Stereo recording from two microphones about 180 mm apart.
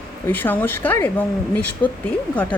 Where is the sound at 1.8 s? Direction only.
25° left (ahead or behind).